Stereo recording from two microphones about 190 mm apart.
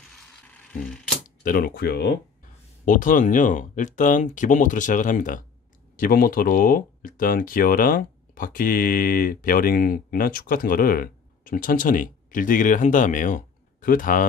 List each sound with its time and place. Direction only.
1.4 s speech: 50° left (ahead or behind)
2.8 s speech: 45° left (ahead or behind)